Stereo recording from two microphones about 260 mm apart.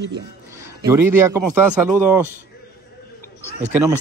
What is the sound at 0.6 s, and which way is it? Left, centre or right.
A man's voice, centre.